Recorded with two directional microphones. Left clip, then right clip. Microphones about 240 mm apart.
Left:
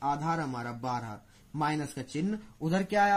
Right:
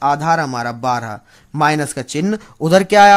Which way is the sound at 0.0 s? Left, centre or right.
Right.